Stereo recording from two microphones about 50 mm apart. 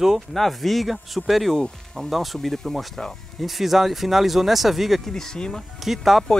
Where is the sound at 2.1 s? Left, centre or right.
Centre.